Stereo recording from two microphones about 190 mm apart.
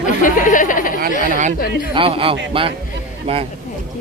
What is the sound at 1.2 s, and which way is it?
Speech, 45° right (ahead or behind).